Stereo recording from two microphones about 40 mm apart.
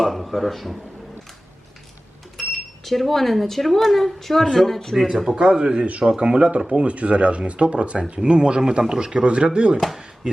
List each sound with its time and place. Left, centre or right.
0.0 s speech: centre
2.4 s speech: centre
5.0 s speech: centre
5.4 s speech: right